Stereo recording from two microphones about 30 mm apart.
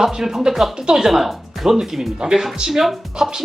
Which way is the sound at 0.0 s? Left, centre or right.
Centre.